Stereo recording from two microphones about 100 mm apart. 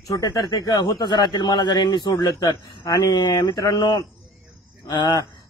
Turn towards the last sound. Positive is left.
turn(degrees=45)  # may be behind; listen again after turning